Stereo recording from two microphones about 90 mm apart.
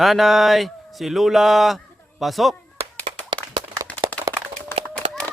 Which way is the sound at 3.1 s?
65° right (ahead or behind).